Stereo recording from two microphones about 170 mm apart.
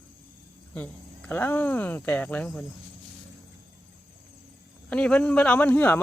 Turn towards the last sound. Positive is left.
turn(degrees=10)  # may be behind; listen again after turning